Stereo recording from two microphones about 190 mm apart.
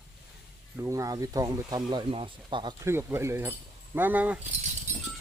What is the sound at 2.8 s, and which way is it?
Speech, 15° right (ahead or behind).